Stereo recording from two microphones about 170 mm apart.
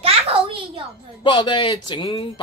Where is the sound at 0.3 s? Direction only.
35° right (ahead or behind).